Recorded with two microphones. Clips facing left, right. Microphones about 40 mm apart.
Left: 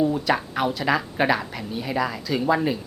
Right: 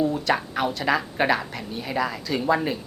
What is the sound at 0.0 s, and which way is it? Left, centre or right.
Speech, centre.